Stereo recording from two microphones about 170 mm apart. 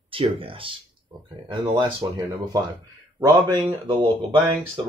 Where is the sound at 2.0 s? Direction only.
25° right (ahead or behind).